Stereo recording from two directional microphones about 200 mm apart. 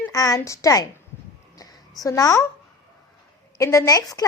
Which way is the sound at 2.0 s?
15° left (ahead or behind).